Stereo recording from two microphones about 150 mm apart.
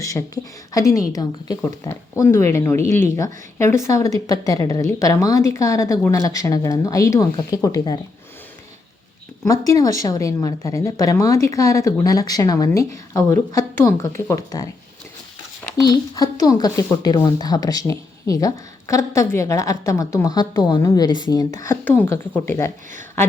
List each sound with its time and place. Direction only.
0.0 s speech: 20° left (ahead or behind)
2.8 s speech: 55° right (ahead or behind)
3.2 s speech: 20° left (ahead or behind)
9.4 s speech: 20° left (ahead or behind)
15.8 s speech: 25° left (ahead or behind)
21.6 s speech: 15° left (ahead or behind)